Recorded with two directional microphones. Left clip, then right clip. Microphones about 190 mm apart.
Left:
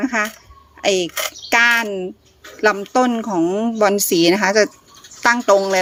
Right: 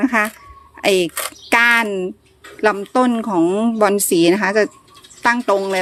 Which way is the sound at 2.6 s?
10° right (ahead or behind).